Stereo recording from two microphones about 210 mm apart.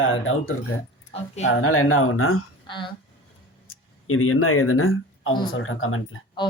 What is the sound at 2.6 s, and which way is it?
Speech, 25° left (ahead or behind).